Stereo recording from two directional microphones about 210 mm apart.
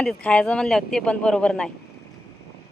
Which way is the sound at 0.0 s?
5° left (ahead or behind).